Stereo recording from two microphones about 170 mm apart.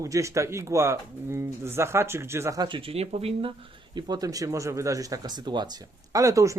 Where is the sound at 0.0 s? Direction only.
20° right (ahead or behind).